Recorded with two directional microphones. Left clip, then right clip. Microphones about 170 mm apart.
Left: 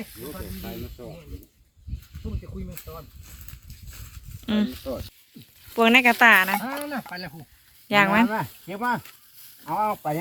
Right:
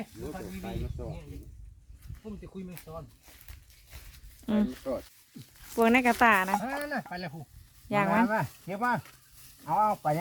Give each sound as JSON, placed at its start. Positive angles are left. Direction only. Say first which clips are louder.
{"t": 1.0, "sound": "speech", "louder": "left 1 dB", "side_deg": 40}
{"t": 4.4, "sound": "speech", "louder": "left 3 dB", "side_deg": -10}
{"t": 6.6, "sound": "speech", "louder": "left 2 dB", "side_deg": -25}
{"t": 7.9, "sound": "speech", "louder": "left 7 dB", "side_deg": 5}